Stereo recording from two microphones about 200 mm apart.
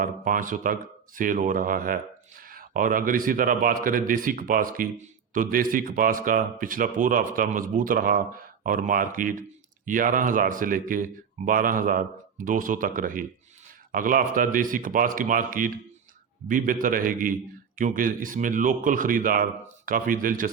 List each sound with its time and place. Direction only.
0.0 s speech: 45° right (ahead or behind)